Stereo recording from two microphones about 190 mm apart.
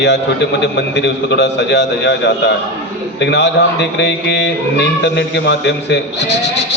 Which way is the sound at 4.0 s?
65° left (ahead or behind).